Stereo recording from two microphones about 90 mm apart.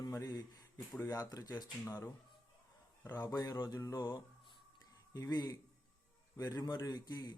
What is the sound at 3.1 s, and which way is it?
Speech, 50° left (ahead or behind).